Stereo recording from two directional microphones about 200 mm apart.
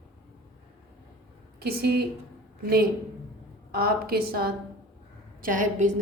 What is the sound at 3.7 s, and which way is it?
A woman's voice, 50° right (ahead or behind).